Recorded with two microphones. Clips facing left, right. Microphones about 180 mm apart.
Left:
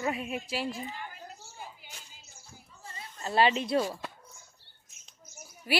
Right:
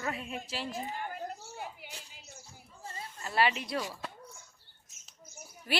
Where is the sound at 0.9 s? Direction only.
50° right (ahead or behind).